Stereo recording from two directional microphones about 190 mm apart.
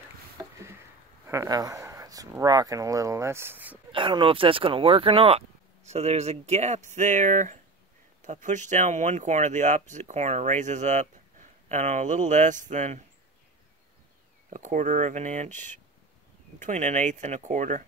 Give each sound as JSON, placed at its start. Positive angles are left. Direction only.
{"t": 1.2, "sound": "speech", "side_deg": -15}
{"t": 3.9, "sound": "speech", "side_deg": -25}
{"t": 14.5, "sound": "speech", "side_deg": -40}
{"t": 15.5, "sound": "speech", "side_deg": 10}
{"t": 16.5, "sound": "speech", "side_deg": -40}